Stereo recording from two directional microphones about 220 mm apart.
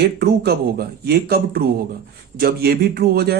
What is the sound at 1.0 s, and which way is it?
Speech, 45° right (ahead or behind).